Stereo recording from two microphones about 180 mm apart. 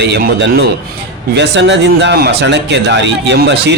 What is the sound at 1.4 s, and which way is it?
Speech, 80° right.